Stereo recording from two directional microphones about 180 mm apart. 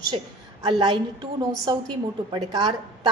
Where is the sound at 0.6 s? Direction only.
25° right (ahead or behind).